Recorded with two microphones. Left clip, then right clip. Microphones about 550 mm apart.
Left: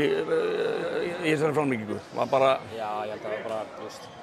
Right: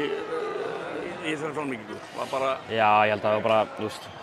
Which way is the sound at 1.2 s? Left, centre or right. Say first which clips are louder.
Left 7 dB; left.